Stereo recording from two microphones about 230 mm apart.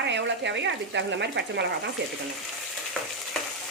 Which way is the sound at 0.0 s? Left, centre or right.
Right.